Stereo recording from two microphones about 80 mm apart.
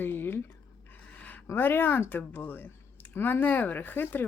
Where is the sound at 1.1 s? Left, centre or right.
Left.